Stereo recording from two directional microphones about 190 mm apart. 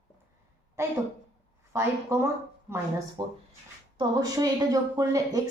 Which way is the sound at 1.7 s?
15° right (ahead or behind).